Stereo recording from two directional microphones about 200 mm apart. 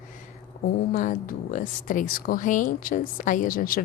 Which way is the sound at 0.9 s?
40° left (ahead or behind).